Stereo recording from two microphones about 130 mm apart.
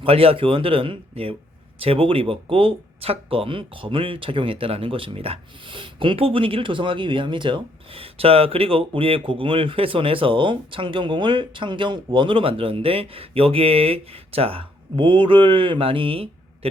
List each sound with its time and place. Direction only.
0.0 s speech: 45° right (ahead or behind)